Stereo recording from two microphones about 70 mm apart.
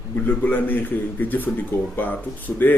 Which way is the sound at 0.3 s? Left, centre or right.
Left.